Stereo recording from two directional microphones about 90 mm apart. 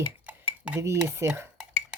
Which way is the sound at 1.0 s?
30° right (ahead or behind).